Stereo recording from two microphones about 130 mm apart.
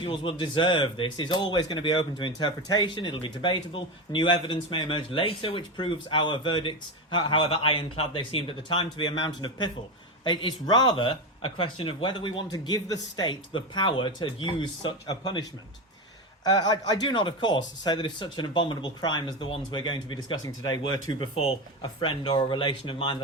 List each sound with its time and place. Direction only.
0.0 s speech: 40° left (ahead or behind)
20.2 s speech: 25° left (ahead or behind)
21.2 s speech: 40° left (ahead or behind)